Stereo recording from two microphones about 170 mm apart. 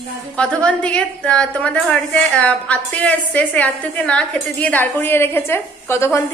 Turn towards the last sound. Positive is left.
turn(degrees=15)  # may be behind; listen again after turning